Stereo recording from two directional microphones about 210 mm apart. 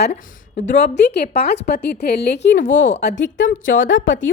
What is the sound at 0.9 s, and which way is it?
A woman's voice, 50° left (ahead or behind).